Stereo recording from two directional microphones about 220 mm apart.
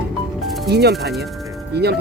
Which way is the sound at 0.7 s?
50° right (ahead or behind).